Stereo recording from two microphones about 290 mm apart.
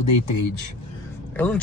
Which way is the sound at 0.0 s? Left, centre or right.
Left.